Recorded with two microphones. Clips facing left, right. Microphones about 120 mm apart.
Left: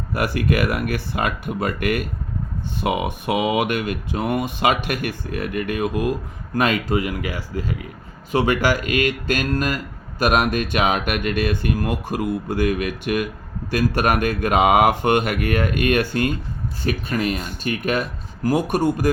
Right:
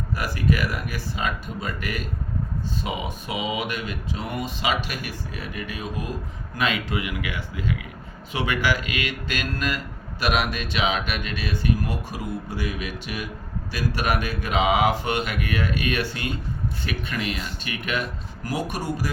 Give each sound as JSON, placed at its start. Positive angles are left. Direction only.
{"t": 0.1, "sound": "speech", "side_deg": 60}
{"t": 6.6, "sound": "speech", "side_deg": 45}